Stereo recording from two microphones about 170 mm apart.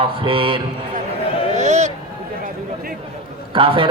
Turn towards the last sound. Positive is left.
turn(degrees=-30)  # may be behind; listen again after turning